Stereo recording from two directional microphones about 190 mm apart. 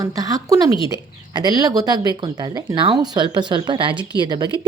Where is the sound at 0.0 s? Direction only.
20° right (ahead or behind).